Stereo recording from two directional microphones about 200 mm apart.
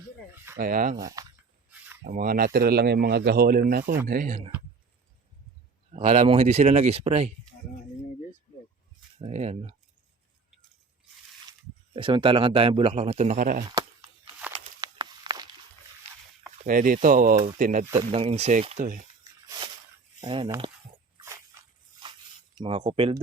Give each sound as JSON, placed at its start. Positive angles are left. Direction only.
{"t": 0.6, "sound": "speech", "side_deg": -45}
{"t": 0.9, "sound": "speech", "side_deg": -15}
{"t": 2.0, "sound": "speech", "side_deg": -45}
{"t": 5.9, "sound": "speech", "side_deg": -30}
{"t": 9.1, "sound": "speech", "side_deg": -35}
{"t": 11.9, "sound": "speech", "side_deg": -25}
{"t": 14.8, "sound": "a sound", "side_deg": -20}
{"t": 16.6, "sound": "speech", "side_deg": -45}
{"t": 17.9, "sound": "speech", "side_deg": -25}
{"t": 19.5, "sound": "a sound", "side_deg": -20}
{"t": 20.2, "sound": "speech", "side_deg": -25}
{"t": 22.5, "sound": "speech", "side_deg": -25}